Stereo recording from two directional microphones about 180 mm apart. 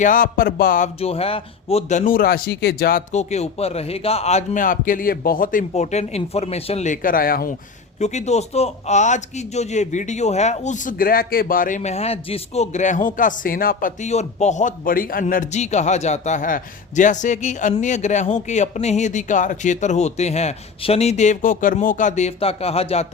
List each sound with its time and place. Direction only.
0.0 s speech: 50° left (ahead or behind)
0.9 s speech: 35° left (ahead or behind); by 3.0 s 55° left (ahead or behind)
3.1 s speech: 40° left (ahead or behind)
7.9 s speech: 40° left (ahead or behind)